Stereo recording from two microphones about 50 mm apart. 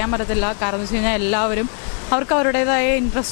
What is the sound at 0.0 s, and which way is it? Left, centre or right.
Speech, left.